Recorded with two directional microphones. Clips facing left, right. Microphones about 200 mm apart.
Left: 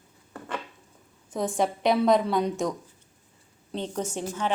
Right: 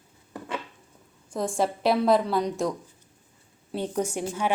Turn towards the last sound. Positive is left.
turn(degrees=-10)  # may be behind; listen again after turning